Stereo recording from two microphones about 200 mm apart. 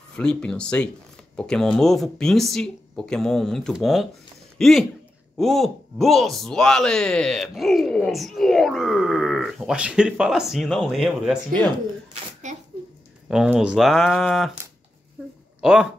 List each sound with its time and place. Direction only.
0.1 s a man's voice: 5° left (ahead or behind)
12.4 s sneeze: 35° right (ahead or behind)
13.3 s a man's voice: 5° right (ahead or behind)
15.2 s a sound: 5° right (ahead or behind)
15.6 s speech: 5° right (ahead or behind)